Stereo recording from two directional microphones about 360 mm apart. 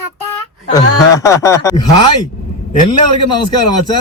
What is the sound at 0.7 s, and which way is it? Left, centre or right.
Speech, centre.